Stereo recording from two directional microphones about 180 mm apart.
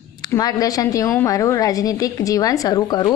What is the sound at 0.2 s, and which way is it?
A woman's voice, 20° left (ahead or behind).